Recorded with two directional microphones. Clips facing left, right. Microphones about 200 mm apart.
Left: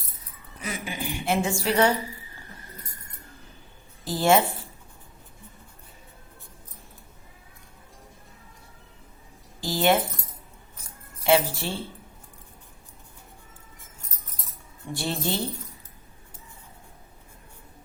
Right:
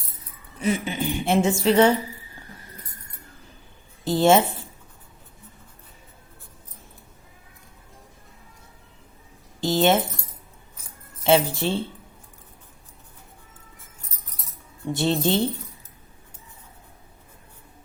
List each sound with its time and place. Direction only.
0.6 s a woman's voice: 25° right (ahead or behind)
4.0 s a woman's voice: 25° right (ahead or behind)
9.6 s speech: 20° right (ahead or behind)
11.2 s a woman's voice: 20° right (ahead or behind)
14.9 s a woman's voice: 20° right (ahead or behind)